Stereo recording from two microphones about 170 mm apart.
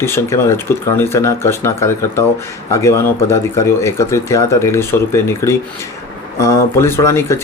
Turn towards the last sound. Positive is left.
turn(degrees=15)  # may be behind; listen again after turning